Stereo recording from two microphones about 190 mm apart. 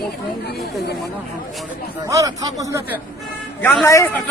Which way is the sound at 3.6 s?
10° left (ahead or behind).